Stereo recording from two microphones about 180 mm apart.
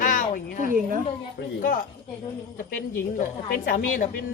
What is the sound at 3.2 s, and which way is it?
Speech, 50° left (ahead or behind).